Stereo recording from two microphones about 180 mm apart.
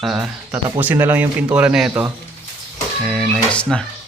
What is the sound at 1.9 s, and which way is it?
Speech, 15° right (ahead or behind).